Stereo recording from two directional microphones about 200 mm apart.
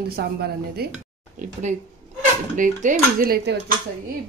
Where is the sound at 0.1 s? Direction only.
50° right (ahead or behind).